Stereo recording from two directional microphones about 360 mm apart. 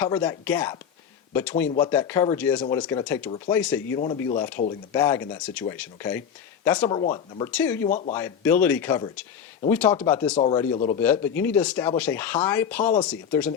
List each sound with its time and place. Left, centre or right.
0.0 s speech: centre
7.9 s speech: centre
8.1 s speech: centre